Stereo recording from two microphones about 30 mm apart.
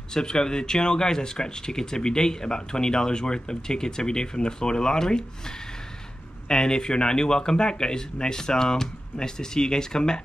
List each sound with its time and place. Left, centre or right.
0.1 s speech: left
6.5 s speech: left